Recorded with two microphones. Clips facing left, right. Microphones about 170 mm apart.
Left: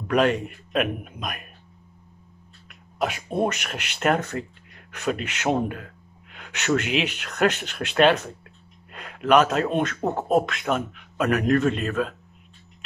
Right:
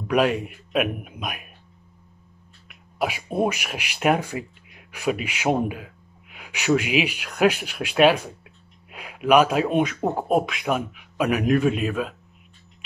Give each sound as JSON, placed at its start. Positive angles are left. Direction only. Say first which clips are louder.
{"t": 0.1, "sound": "speech", "louder": "even", "side_deg": -5}
{"t": 2.7, "sound": "a man's voice", "louder": "even", "side_deg": -5}